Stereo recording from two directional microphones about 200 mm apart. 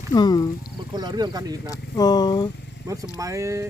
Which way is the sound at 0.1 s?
20° left (ahead or behind).